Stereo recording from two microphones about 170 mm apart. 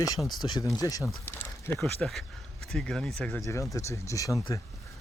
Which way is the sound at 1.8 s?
Centre (ahead or behind).